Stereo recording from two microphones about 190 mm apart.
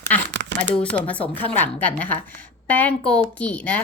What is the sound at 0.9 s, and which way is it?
A woman's voice, 5° left (ahead or behind).